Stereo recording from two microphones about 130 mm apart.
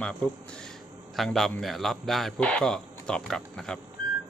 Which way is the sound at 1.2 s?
Centre (ahead or behind).